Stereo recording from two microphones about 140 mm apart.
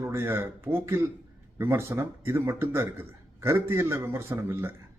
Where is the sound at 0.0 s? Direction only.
20° right (ahead or behind).